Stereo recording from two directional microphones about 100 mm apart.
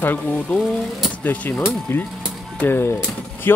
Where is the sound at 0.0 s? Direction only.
20° left (ahead or behind).